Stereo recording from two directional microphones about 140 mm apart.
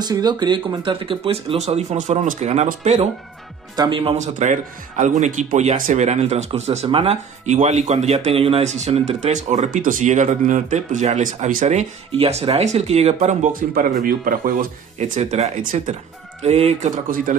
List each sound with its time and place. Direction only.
0.0 s speech: 30° right (ahead or behind); by 3.1 s 55° right (ahead or behind)
3.7 s speech: 35° right (ahead or behind)
4.2 s speech: 60° right (ahead or behind)
5.8 s speech: 65° right (ahead or behind); by 7.2 s 45° right (ahead or behind)
7.4 s speech: 55° right (ahead or behind)
12.2 s speech: 45° right (ahead or behind); by 14.7 s 90° right
15.0 s speech: 55° right (ahead or behind)
16.4 s speech: 50° right (ahead or behind); by 17.4 s 70° right (ahead or behind)